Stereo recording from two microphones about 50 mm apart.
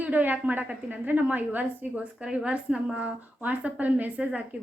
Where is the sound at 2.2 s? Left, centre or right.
Centre.